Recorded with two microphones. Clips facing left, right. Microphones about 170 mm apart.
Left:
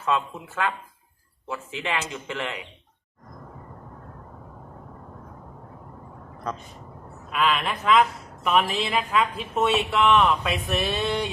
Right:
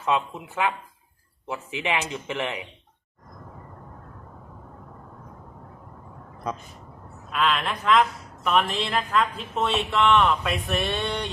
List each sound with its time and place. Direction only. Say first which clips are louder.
0.0 s speech: right 1 dB; 15° right (ahead or behind)
7.3 s speech: left 1 dB; 5° left (ahead or behind)